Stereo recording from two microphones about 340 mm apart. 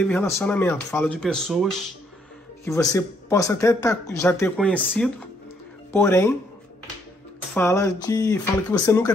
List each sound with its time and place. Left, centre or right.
0.0 s speech: centre
7.5 s speech: centre